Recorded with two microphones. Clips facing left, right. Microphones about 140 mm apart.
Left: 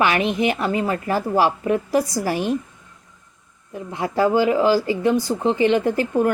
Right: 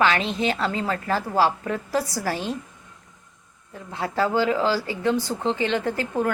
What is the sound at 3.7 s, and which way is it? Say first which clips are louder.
Speech: left 4 dB; 15° left (ahead or behind).